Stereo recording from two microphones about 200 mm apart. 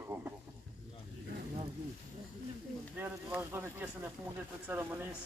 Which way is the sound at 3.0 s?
10° right (ahead or behind).